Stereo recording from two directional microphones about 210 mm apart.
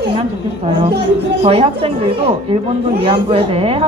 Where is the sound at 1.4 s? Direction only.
30° right (ahead or behind).